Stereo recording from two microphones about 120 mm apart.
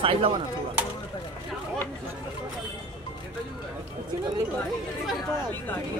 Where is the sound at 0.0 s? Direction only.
50° right (ahead or behind).